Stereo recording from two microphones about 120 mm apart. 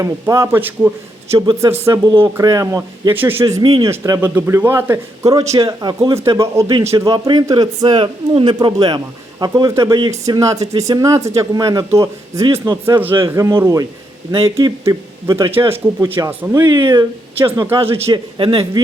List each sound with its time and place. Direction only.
0.0 s speech: 25° right (ahead or behind)
3.8 s speech: 30° right (ahead or behind)
4.2 s speech: 20° right (ahead or behind); by 6.1 s 35° right (ahead or behind)
6.1 s a man's voice: 25° right (ahead or behind)
18.1 s a man's voice: 45° right (ahead or behind)